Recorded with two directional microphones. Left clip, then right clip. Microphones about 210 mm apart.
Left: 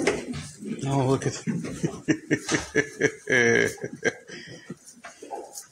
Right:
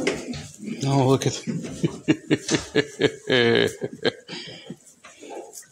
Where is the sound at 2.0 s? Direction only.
25° right (ahead or behind).